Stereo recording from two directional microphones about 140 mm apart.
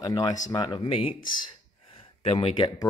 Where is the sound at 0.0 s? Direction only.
25° left (ahead or behind).